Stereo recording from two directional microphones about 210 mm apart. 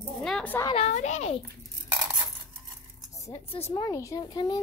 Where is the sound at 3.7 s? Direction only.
15° left (ahead or behind).